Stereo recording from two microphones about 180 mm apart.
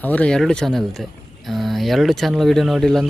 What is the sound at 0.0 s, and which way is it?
Speech, 10° left (ahead or behind).